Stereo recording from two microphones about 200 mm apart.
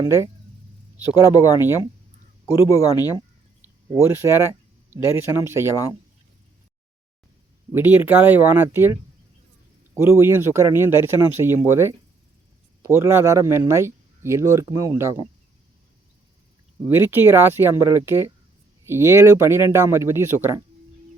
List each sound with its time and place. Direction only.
0.0 s speech: 15° right (ahead or behind)
1.4 s speech: 10° right (ahead or behind)
2.5 s speech: 15° left (ahead or behind)
4.0 s speech: 15° right (ahead or behind)
7.7 s speech: 10° right (ahead or behind)
10.0 s speech: 10° right (ahead or behind)
16.8 s speech: 10° right (ahead or behind)